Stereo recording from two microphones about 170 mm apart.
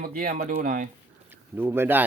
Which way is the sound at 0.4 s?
55° right (ahead or behind).